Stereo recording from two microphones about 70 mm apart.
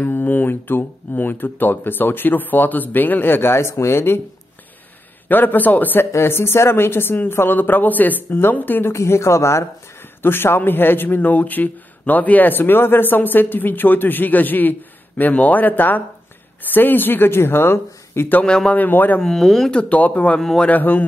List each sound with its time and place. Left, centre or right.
0.0 s speech: left
5.3 s speech: left
8.9 s speech: left
18.4 s speech: centre
18.8 s speech: left
19.2 s speech: centre
20.3 s speech: centre
20.6 s speech: left